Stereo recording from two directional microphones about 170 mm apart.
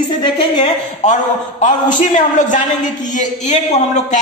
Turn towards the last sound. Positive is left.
turn(degrees=45)  # may be behind; listen again after turning